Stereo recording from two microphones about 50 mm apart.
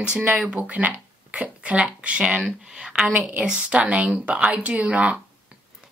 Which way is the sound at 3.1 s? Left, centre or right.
Right.